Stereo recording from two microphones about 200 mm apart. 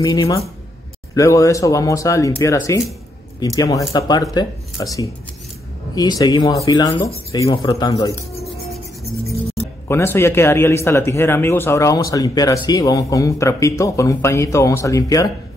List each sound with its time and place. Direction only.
0.0 s speech: 15° left (ahead or behind)
5.9 s speech: 20° left (ahead or behind)
9.8 s speech: 10° left (ahead or behind)